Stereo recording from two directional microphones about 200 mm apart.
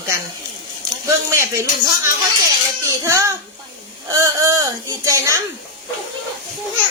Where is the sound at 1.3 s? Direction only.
15° right (ahead or behind).